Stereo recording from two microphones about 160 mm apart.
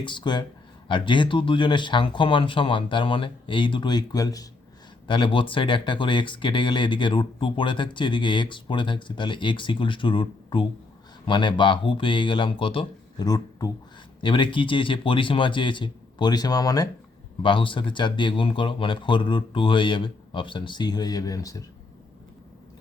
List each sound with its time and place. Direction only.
0.0 s speech: 30° left (ahead or behind)